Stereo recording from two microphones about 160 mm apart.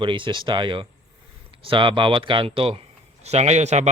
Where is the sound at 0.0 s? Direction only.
30° right (ahead or behind).